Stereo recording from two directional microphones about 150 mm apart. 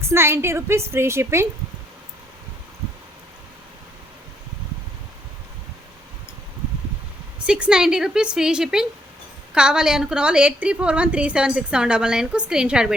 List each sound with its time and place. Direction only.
0.0 s a woman's voice: 15° right (ahead or behind)
7.3 s a woman's voice: 5° right (ahead or behind)